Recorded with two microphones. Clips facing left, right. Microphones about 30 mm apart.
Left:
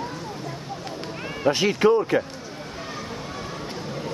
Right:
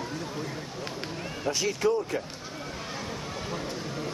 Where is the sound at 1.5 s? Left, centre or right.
Left.